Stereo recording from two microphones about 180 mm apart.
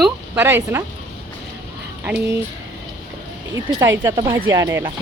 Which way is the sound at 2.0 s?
10° right (ahead or behind).